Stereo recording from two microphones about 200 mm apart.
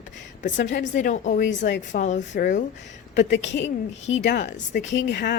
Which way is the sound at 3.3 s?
65° left (ahead or behind).